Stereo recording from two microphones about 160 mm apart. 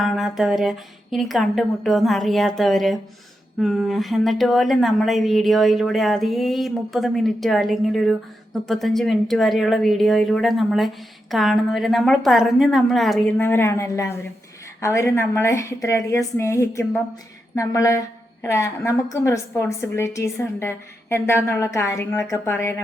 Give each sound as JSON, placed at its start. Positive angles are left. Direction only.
{"t": 0.0, "sound": "a woman's voice", "side_deg": 0}